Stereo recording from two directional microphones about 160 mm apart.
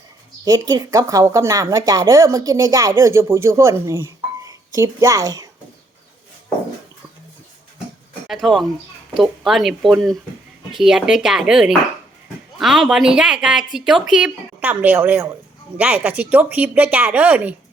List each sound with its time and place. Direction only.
0.4 s speech: 20° right (ahead or behind)
8.3 s a woman's voice: centre (ahead or behind)